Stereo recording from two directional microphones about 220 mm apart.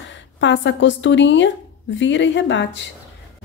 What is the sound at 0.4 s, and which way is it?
A woman's voice, 55° left (ahead or behind).